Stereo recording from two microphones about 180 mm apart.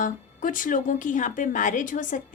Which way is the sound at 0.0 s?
50° left (ahead or behind).